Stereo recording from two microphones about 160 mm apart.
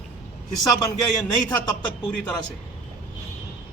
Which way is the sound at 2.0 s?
10° left (ahead or behind).